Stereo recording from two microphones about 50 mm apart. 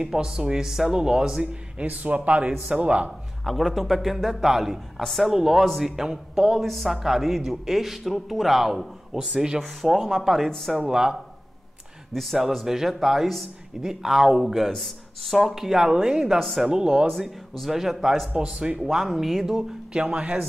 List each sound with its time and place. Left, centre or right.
0.0 s speech: centre
1.8 s speech: right
3.4 s speech: centre
6.6 s speech: centre
12.1 s speech: centre
16.3 s speech: centre
16.6 s speech: centre
18.3 s speech: right
18.9 s speech: centre